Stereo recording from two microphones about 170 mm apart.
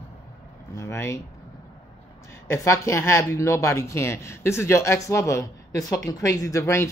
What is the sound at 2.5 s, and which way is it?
Speech, 15° left (ahead or behind).